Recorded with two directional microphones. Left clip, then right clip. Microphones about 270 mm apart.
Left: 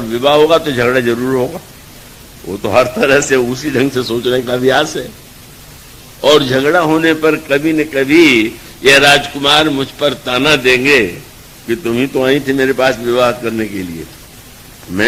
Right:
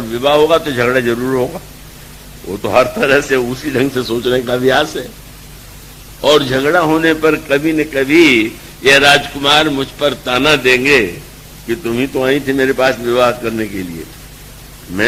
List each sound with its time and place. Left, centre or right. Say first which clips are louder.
0.1 s a man's voice: left 1 dB; right
6.2 s a man's voice: left 2 dB; right